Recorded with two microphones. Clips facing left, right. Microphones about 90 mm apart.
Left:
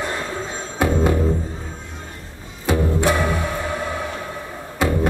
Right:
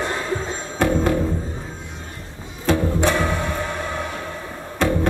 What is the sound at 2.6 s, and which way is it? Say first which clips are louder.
Music: even; 15° left (ahead or behind).